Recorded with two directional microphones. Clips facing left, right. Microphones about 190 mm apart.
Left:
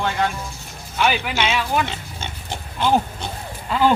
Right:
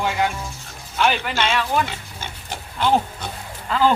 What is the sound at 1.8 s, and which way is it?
Pig, 20° left (ahead or behind).